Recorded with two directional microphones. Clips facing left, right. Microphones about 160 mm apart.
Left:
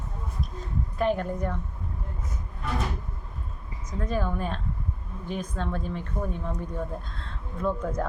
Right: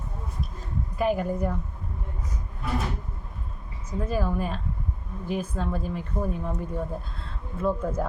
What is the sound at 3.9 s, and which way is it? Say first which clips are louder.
A woman's voice: right 2 dB; 10° right (ahead or behind).